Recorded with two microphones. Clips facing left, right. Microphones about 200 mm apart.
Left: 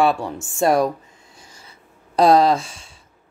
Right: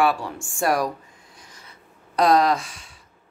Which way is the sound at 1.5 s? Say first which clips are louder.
Left 1 dB; 30° left (ahead or behind).